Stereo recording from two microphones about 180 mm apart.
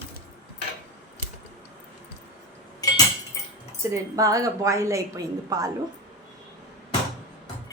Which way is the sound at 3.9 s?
20° right (ahead or behind).